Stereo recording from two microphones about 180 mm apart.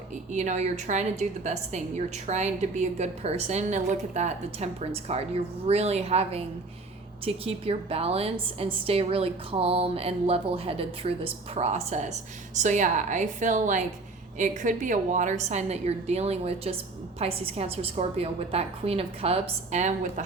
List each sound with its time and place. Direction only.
0.3 s a woman's voice: 40° right (ahead or behind)